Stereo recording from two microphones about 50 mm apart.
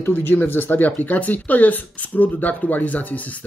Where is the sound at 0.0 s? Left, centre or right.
Left.